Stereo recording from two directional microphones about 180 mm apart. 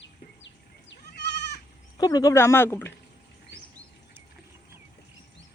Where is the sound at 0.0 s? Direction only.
90° left.